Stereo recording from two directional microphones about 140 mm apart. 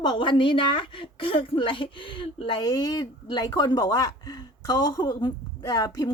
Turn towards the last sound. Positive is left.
turn(degrees=30)  # may be behind; listen again after turning